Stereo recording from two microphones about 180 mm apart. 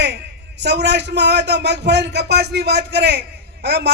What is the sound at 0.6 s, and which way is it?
Speech, 70° right (ahead or behind).